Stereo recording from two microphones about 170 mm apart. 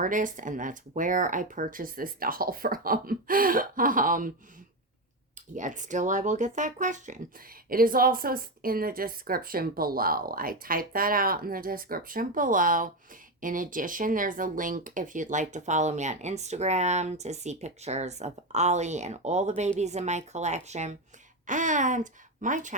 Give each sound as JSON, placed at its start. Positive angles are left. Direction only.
{"t": 0.0, "sound": "speech", "side_deg": -50}
{"t": 5.5, "sound": "speech", "side_deg": -45}
{"t": 7.7, "sound": "speech", "side_deg": -60}